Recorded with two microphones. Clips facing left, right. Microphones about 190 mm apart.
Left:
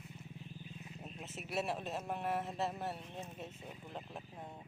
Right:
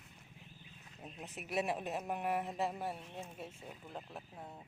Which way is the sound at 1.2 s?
15° right (ahead or behind).